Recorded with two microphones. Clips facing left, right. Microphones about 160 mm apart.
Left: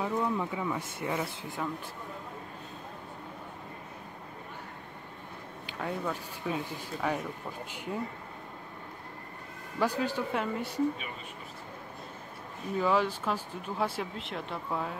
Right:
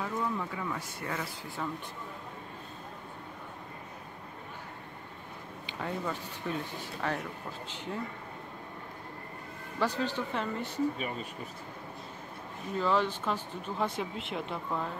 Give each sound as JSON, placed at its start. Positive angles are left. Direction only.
{"t": 0.0, "sound": "speech", "side_deg": 15}
{"t": 1.6, "sound": "speech", "side_deg": 5}
{"t": 5.7, "sound": "speech", "side_deg": 0}
{"t": 9.8, "sound": "speech", "side_deg": 10}
{"t": 12.7, "sound": "speech", "side_deg": 10}